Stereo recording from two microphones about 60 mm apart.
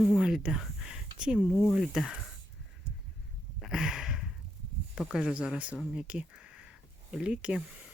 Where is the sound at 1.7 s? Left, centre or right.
Centre.